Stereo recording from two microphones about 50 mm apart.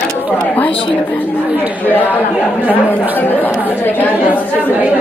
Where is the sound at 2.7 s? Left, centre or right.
Left.